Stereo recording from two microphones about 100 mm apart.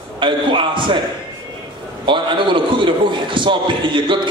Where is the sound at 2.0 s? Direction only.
55° right (ahead or behind).